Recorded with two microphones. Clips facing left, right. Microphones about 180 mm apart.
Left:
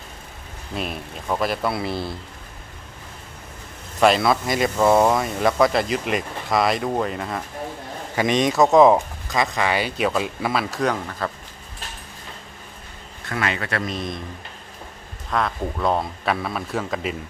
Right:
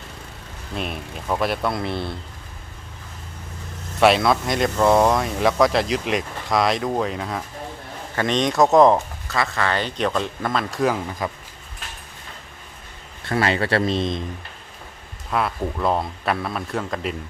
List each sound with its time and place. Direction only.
0.7 s speech: centre (ahead or behind)
4.0 s speech: centre (ahead or behind)
8.9 s speech: 15° left (ahead or behind); by 11.0 s centre (ahead or behind)
11.1 s speech: 10° right (ahead or behind)
13.3 s a man's voice: 35° right (ahead or behind)
15.3 s speech: 5° right (ahead or behind)